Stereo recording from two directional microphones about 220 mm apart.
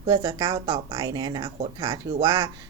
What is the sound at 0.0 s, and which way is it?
Speech, 20° right (ahead or behind).